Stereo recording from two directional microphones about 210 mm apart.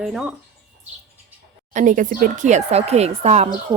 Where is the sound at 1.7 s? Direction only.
40° right (ahead or behind).